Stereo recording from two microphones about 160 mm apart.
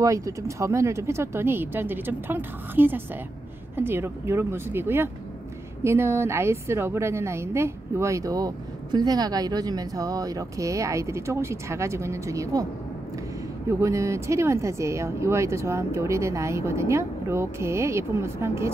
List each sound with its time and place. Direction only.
0.0 s a woman's voice: 20° right (ahead or behind)
13.7 s speech: 20° right (ahead or behind)